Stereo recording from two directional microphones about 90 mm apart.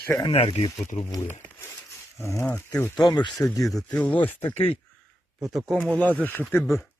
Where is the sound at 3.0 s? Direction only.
50° left (ahead or behind).